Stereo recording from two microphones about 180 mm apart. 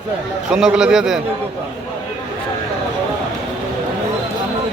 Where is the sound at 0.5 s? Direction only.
5° right (ahead or behind).